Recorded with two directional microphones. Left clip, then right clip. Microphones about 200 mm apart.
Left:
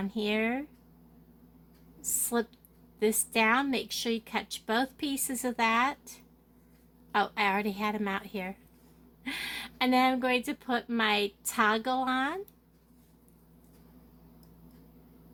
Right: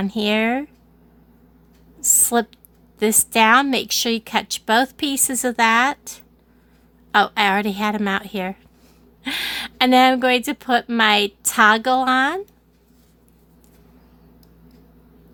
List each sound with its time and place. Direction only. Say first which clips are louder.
0.0 s a woman's voice: right 11 dB; 50° right (ahead or behind)
2.0 s a sound: right 13 dB; 50° right (ahead or behind)
3.0 s a woman's voice: right 11 dB; 50° right (ahead or behind)